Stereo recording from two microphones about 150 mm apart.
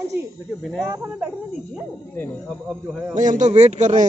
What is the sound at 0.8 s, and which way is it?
Speech, 15° right (ahead or behind).